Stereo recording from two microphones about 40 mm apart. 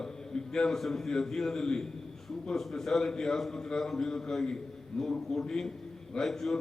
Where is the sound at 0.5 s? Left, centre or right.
Centre.